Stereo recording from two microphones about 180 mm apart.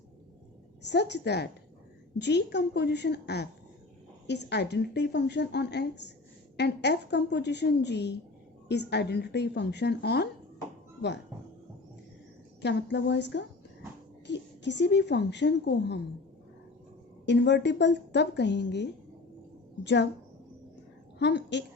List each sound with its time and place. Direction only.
0.8 s speech: 70° left (ahead or behind)
12.6 s a woman's voice: 75° left (ahead or behind)
17.2 s speech: 75° left (ahead or behind)
21.2 s a woman's voice: 75° left (ahead or behind)